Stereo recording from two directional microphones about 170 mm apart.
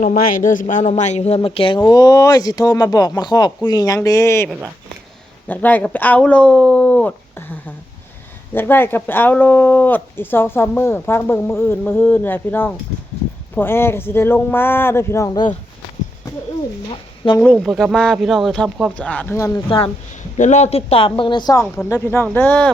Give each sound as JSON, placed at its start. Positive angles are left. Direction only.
{"t": 0.0, "sound": "speech", "side_deg": 50}
{"t": 5.5, "sound": "speech", "side_deg": 10}
{"t": 8.5, "sound": "speech", "side_deg": 10}
{"t": 17.4, "sound": "speech", "side_deg": 5}
{"t": 19.6, "sound": "speech", "side_deg": 30}
{"t": 20.3, "sound": "speech", "side_deg": 45}